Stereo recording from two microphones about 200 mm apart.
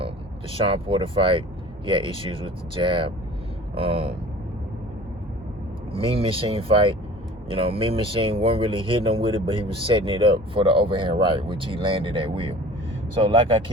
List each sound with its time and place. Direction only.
0.5 s speech: 25° right (ahead or behind)
5.9 s speech: 25° right (ahead or behind)